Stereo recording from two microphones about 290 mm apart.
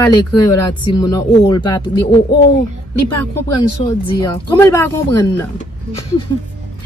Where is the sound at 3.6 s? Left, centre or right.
Centre.